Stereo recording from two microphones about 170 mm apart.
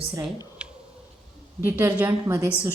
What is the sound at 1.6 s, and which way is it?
Speech, 15° right (ahead or behind).